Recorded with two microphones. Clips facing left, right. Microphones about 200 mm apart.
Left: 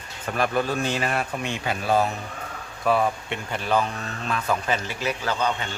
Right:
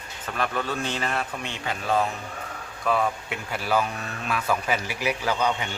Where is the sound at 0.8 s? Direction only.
10° left (ahead or behind).